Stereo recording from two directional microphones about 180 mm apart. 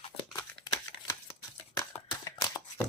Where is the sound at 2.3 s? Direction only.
20° left (ahead or behind).